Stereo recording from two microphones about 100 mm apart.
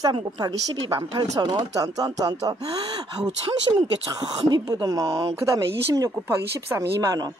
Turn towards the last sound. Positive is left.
turn(degrees=-35)  # may be behind; listen again after turning